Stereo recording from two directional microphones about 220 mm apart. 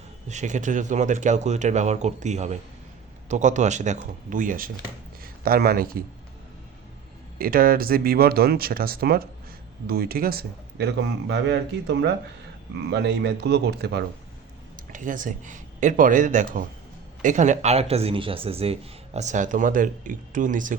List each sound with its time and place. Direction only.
0.3 s speech: 35° right (ahead or behind)
7.3 s speech: 40° right (ahead or behind)
14.9 s speech: 35° right (ahead or behind)